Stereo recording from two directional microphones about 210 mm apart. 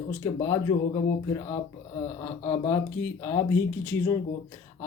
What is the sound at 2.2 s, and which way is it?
Speech, 10° left (ahead or behind).